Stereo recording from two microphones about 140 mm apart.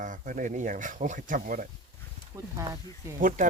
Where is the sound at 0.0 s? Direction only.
70° right (ahead or behind).